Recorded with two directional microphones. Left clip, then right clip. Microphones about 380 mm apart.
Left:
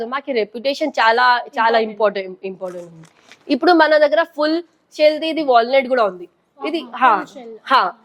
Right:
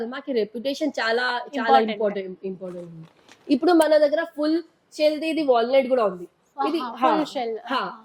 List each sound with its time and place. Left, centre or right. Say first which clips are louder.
0.0 s a woman's voice: left 5 dB; left
3.4 s a woman's voice: left 6 dB; left
7.6 s a woman's voice: left 16 dB; left